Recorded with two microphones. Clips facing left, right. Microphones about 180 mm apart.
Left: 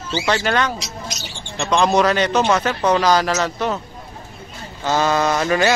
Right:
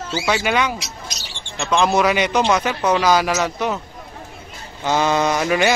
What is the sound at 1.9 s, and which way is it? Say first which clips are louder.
Speech: left 1 dB; 10° right (ahead or behind).